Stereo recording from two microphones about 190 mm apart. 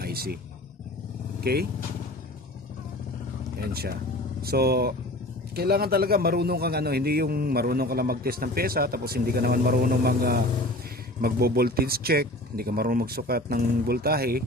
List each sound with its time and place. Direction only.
0.0 s a sound: 55° right (ahead or behind)
1.4 s speech: 55° right (ahead or behind)
3.7 s a man's voice: 55° right (ahead or behind)